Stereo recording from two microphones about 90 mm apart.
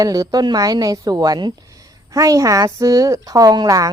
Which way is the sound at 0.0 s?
45° right (ahead or behind).